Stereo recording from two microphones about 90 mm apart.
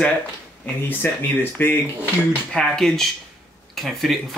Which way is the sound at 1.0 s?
25° left (ahead or behind).